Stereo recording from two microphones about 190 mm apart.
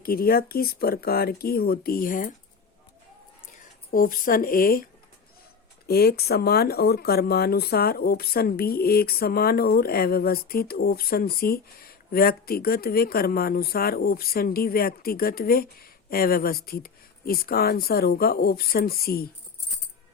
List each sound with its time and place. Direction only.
0.0 s speech: 50° left (ahead or behind)
3.9 s speech: 45° left (ahead or behind)